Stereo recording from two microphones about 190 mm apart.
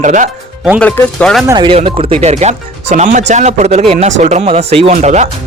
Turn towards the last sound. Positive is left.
turn(degrees=-35)  # may be behind; listen again after turning